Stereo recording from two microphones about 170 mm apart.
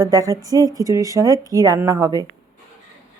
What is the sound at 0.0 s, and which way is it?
A woman's voice, 20° right (ahead or behind).